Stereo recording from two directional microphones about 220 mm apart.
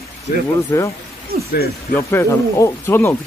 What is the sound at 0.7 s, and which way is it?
Speech, 15° left (ahead or behind).